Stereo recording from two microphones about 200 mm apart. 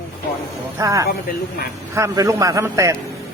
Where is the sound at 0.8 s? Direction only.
15° right (ahead or behind).